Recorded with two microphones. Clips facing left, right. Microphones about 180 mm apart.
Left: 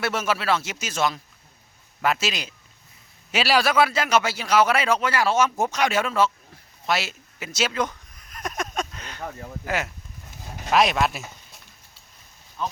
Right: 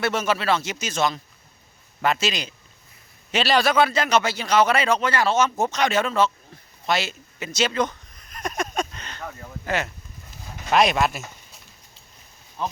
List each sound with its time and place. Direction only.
0.0 s a man's voice: 5° left (ahead or behind)
6.8 s a sound: 5° left (ahead or behind)
9.6 s speech: 5° left (ahead or behind)